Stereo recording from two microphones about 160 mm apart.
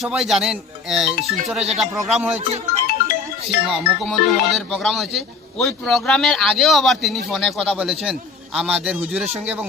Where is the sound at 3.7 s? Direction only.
Centre (ahead or behind).